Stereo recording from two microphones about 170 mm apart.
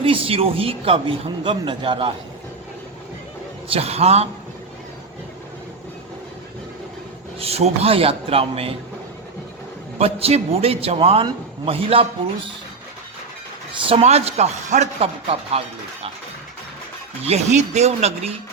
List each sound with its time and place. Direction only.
0.0 s a man's voice: 30° right (ahead or behind)
3.7 s a man's voice: 35° right (ahead or behind)
7.3 s a man's voice: 35° right (ahead or behind)
10.0 s a man's voice: 35° right (ahead or behind)
13.8 s a man's voice: 35° right (ahead or behind)
17.2 s a man's voice: 40° right (ahead or behind)